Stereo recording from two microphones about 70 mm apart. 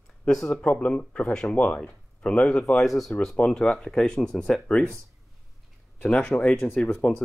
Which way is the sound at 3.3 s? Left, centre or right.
Centre.